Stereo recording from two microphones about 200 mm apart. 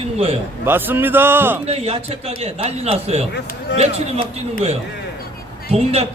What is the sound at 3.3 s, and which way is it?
Speech, 60° left (ahead or behind).